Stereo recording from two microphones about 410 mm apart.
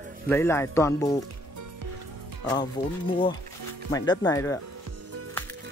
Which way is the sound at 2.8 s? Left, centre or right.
Left.